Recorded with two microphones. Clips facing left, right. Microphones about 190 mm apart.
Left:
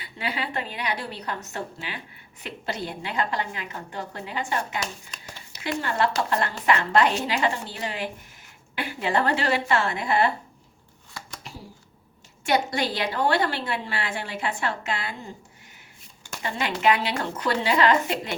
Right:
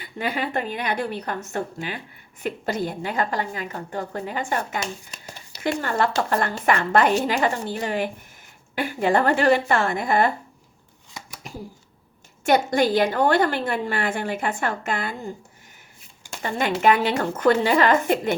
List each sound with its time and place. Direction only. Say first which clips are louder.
0.0 s a woman's voice: right 4 dB; 45° right (ahead or behind)
5.8 s a woman's voice: even; 45° right (ahead or behind)
12.5 s a woman's voice: right 5 dB; 45° right (ahead or behind)
16.4 s a woman's voice: right 4 dB; 45° right (ahead or behind)